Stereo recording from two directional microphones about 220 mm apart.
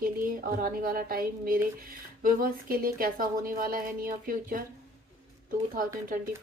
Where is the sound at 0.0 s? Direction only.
40° right (ahead or behind).